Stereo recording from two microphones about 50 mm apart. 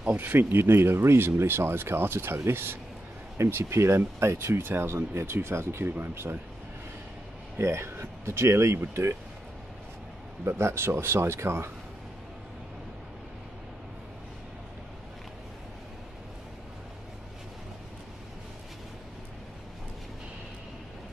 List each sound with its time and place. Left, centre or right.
0.2 s speech: right
3.3 s speech: right
6.2 s speech: right
7.5 s speech: right
10.4 s speech: right